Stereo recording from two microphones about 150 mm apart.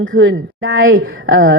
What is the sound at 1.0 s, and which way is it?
Speech, 85° right.